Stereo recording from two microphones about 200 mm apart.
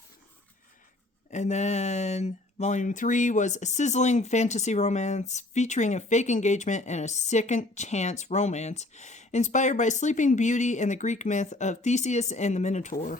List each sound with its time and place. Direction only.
1.3 s speech: 35° left (ahead or behind)